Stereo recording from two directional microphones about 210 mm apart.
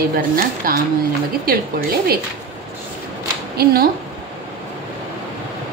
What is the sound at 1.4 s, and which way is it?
Speech, 45° right (ahead or behind).